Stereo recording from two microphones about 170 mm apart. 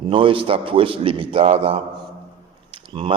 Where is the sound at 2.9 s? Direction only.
30° right (ahead or behind).